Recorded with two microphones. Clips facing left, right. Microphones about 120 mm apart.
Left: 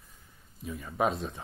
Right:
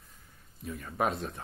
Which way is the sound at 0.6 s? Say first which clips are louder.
Left 2 dB; 5° left (ahead or behind).